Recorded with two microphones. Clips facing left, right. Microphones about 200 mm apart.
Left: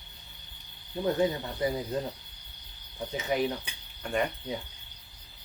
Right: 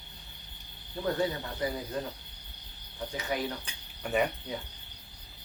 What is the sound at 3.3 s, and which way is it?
Speech, 20° left (ahead or behind).